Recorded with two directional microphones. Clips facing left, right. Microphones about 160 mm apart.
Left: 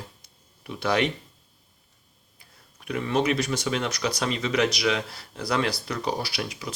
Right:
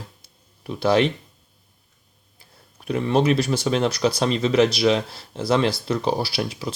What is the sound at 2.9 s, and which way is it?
Speech, 30° right (ahead or behind).